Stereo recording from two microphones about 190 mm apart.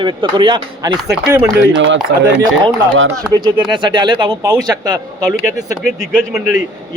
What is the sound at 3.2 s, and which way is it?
A man's voice, 20° right (ahead or behind).